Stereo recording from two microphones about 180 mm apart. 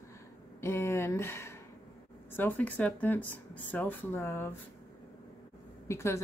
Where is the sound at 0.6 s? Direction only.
15° left (ahead or behind).